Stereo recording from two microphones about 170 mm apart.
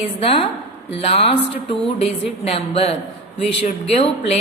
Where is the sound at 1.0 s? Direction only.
35° left (ahead or behind).